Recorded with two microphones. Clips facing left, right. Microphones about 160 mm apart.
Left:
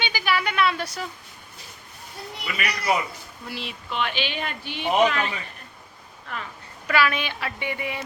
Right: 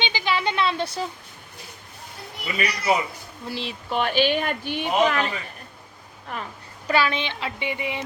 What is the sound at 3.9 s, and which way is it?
Speech, 45° right (ahead or behind).